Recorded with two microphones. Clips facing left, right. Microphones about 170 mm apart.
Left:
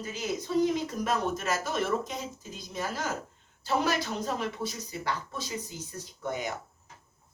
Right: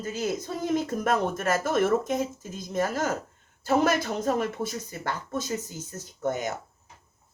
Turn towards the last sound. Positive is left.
turn(degrees=-45)  # may be behind; listen again after turning